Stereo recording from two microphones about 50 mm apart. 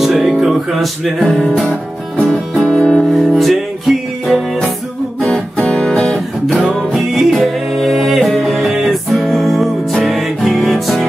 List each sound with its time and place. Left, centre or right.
0.0 s music: centre
2.6 s music: left
3.1 s music: centre
5.3 s music: left
6.4 s music: centre